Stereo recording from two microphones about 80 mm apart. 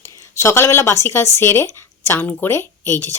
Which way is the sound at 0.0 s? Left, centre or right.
Left.